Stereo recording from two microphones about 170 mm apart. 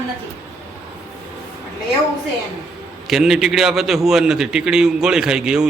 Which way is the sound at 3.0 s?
Centre (ahead or behind).